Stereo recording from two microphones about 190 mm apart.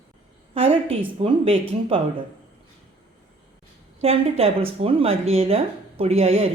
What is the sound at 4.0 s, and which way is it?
A woman's voice, 30° right (ahead or behind).